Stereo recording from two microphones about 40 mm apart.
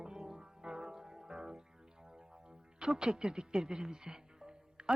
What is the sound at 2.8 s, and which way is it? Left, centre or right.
Speech, right.